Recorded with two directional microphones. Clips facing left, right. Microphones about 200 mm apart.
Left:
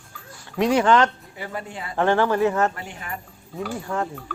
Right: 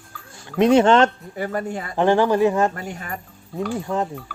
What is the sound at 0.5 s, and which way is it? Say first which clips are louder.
Speech: right 4 dB; 25° right (ahead or behind).